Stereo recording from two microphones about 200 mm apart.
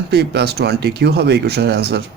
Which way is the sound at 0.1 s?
55° right (ahead or behind).